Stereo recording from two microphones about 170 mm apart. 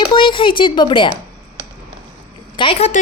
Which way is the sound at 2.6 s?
35° left (ahead or behind).